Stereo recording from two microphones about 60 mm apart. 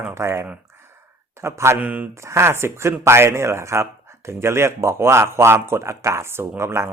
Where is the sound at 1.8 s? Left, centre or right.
Right.